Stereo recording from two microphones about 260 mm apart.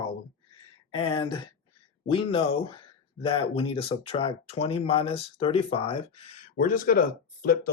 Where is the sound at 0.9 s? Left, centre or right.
Left.